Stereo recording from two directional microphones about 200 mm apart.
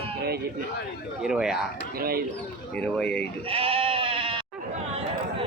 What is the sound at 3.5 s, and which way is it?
Sheep, 30° right (ahead or behind).